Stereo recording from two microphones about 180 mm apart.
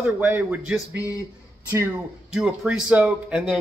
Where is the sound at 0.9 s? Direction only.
20° left (ahead or behind).